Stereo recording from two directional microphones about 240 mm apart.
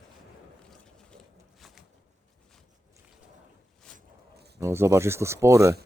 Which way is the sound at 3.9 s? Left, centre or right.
Right.